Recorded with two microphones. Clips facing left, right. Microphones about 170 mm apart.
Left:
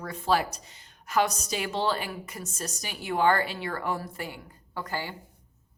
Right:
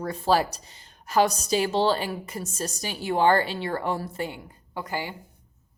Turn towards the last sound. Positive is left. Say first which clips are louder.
# right 2 dB
turn(degrees=-15)  # may be behind; listen again after turning